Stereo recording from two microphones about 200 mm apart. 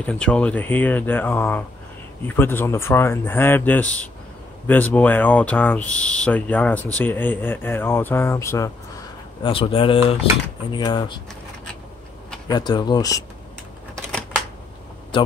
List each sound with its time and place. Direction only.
0.0 s speech: 5° left (ahead or behind)
9.4 s speech: 25° left (ahead or behind)
12.4 s speech: 20° left (ahead or behind)